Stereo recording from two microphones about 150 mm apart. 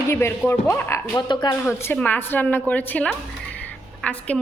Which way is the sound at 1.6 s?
15° left (ahead or behind).